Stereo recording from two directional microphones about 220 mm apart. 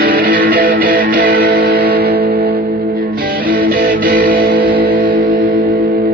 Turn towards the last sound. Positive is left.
turn(degrees=-40)  # may be behind; listen again after turning